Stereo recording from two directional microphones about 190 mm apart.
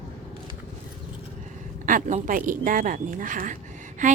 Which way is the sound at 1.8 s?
45° right (ahead or behind).